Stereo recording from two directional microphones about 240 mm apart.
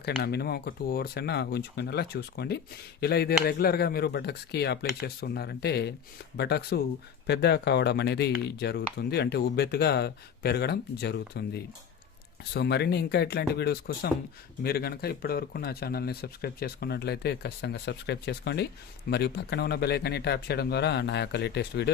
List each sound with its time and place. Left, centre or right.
0.0 s speech: left